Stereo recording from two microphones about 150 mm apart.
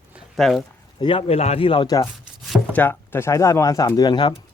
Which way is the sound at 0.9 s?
35° left (ahead or behind).